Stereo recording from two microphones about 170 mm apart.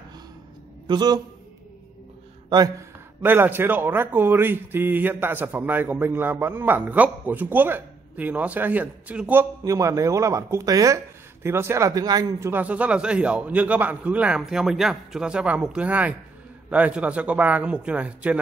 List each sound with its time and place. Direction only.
0.8 s speech: 25° right (ahead or behind)
3.2 s speech: 10° right (ahead or behind)